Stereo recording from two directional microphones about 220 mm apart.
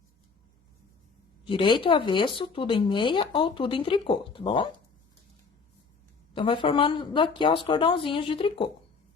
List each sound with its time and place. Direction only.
1.5 s speech: 20° left (ahead or behind)
6.3 s speech: 20° left (ahead or behind)